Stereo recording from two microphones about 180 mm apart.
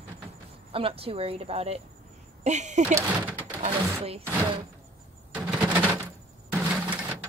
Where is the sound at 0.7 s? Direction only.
30° right (ahead or behind).